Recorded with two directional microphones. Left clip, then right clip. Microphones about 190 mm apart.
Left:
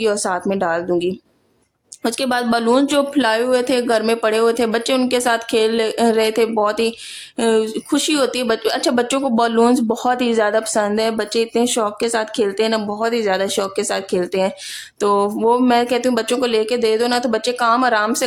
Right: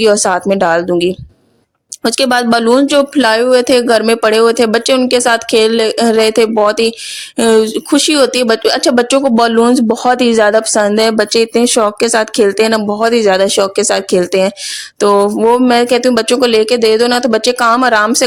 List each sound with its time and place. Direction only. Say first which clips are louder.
0.0 s speech: right 9 dB; 35° right (ahead or behind)